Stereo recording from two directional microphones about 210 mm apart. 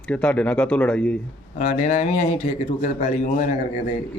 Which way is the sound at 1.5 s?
35° left (ahead or behind).